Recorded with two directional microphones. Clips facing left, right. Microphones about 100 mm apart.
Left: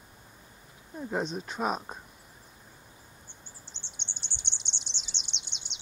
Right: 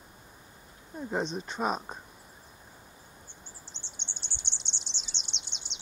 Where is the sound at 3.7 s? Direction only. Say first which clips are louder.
Right 1 dB; 60° left (ahead or behind).